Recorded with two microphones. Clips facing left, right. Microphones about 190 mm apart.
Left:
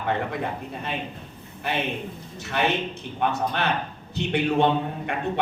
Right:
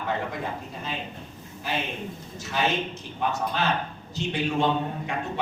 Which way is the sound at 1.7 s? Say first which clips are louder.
Left 3 dB; 60° left (ahead or behind).